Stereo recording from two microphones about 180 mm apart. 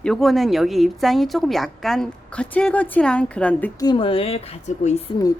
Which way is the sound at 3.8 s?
25° left (ahead or behind).